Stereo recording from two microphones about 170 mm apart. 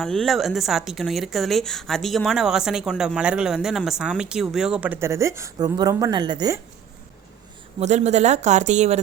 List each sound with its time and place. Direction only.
0.0 s a woman's voice: centre (ahead or behind); by 6.6 s 25° right (ahead or behind)
7.8 s speech: 40° right (ahead or behind)